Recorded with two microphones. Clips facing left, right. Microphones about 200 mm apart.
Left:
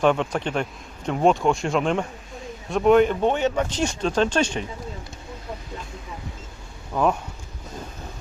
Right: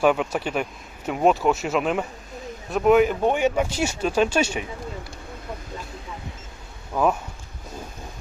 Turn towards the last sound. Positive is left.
turn(degrees=-5)  # may be behind; listen again after turning